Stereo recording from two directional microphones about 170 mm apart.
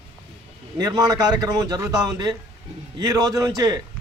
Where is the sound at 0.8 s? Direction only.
25° right (ahead or behind).